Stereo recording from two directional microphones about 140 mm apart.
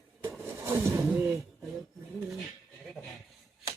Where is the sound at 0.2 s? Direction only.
20° right (ahead or behind).